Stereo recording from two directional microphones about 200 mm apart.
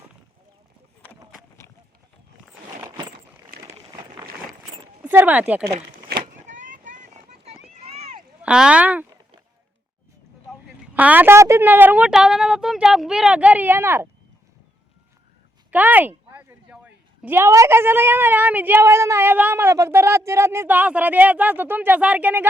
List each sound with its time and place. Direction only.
1.0 s run: centre (ahead or behind)
5.0 s a woman's voice: 10° right (ahead or behind)
6.1 s vehicle: 45° right (ahead or behind)
7.9 s a sound: 30° right (ahead or behind)
8.4 s speech: 5° right (ahead or behind)
10.5 s a sound: centre (ahead or behind)
10.9 s a woman's voice: 10° right (ahead or behind)
15.7 s a woman's voice: 10° right (ahead or behind)